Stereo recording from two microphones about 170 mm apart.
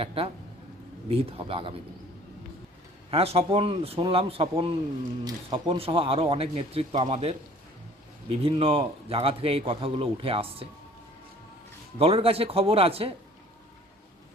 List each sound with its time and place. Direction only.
0.0 s a man's voice: 35° right (ahead or behind)
3.1 s a man's voice: 35° right (ahead or behind)
11.9 s a man's voice: 35° right (ahead or behind)